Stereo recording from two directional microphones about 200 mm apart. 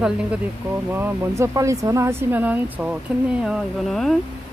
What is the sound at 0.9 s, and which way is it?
Speech, 10° right (ahead or behind).